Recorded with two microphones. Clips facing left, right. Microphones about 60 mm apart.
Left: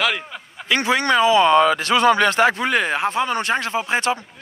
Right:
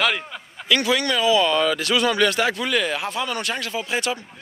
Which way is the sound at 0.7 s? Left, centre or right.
Left.